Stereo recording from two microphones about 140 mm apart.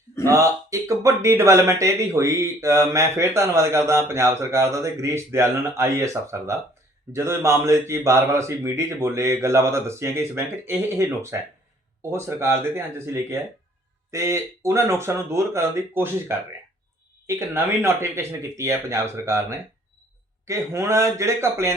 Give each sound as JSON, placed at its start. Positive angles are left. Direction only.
{"t": 0.3, "sound": "speech", "side_deg": -20}